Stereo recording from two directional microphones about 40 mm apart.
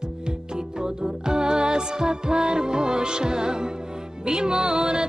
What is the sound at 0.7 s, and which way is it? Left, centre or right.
Music, centre.